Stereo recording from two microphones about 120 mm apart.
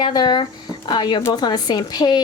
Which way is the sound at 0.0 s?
35° left (ahead or behind).